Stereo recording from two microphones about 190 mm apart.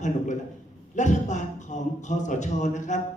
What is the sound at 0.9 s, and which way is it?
A man's voice, 40° left (ahead or behind).